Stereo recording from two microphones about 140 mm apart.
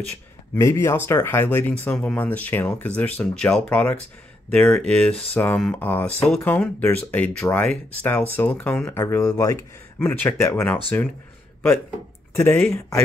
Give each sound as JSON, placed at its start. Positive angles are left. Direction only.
{"t": 0.6, "sound": "speech", "side_deg": 20}
{"t": 9.0, "sound": "speech", "side_deg": 20}
{"t": 12.4, "sound": "speech", "side_deg": 15}